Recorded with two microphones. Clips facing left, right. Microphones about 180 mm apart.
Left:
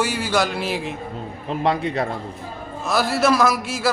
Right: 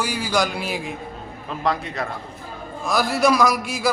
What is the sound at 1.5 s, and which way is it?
Speech, 30° left (ahead or behind).